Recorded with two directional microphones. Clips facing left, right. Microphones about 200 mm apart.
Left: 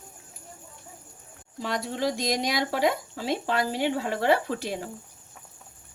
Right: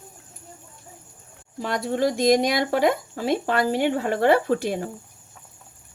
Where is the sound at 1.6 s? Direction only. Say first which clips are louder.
Right 5 dB; 55° right (ahead or behind).